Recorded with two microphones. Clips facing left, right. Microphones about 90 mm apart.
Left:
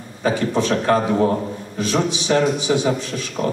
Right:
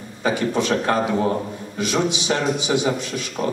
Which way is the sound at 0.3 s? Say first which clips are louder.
Left 1 dB; 15° right (ahead or behind).